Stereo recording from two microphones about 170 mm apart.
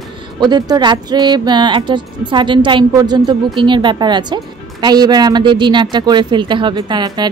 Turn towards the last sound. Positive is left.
turn(degrees=-25)  # may be behind; listen again after turning